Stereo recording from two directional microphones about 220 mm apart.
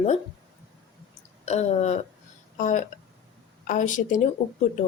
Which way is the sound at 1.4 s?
30° left (ahead or behind).